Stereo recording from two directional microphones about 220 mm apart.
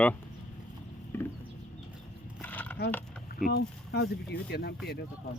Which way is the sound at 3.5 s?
50° left (ahead or behind).